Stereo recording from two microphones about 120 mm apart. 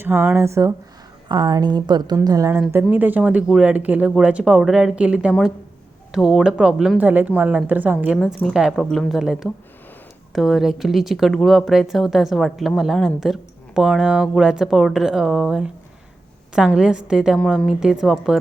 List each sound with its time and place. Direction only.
0.0 s a woman's voice: 20° right (ahead or behind)
2.9 s speech: 15° right (ahead or behind)
17.3 s speech: 5° left (ahead or behind)
17.7 s speech: 5° right (ahead or behind)